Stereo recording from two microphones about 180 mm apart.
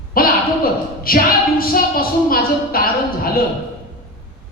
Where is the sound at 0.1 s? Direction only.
55° left (ahead or behind).